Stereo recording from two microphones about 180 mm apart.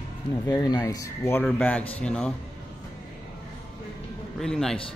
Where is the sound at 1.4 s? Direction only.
5° left (ahead or behind).